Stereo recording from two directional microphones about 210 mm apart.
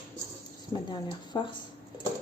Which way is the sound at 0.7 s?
20° left (ahead or behind).